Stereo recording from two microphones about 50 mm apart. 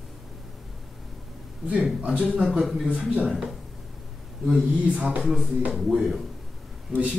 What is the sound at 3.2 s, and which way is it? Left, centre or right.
Speech, centre.